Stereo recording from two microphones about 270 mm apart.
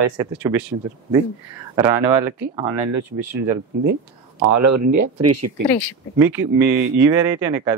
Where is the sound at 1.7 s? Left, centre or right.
Centre.